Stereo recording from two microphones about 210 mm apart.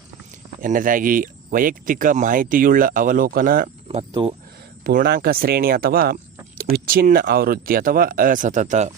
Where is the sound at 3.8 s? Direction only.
25° right (ahead or behind).